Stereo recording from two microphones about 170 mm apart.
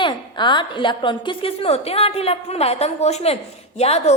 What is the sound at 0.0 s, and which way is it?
A woman's voice, 25° left (ahead or behind).